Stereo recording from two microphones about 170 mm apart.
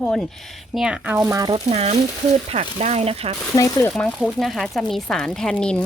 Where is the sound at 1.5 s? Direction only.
35° right (ahead or behind).